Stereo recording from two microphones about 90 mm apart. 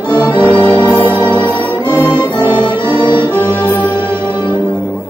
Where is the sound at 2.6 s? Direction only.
65° left (ahead or behind).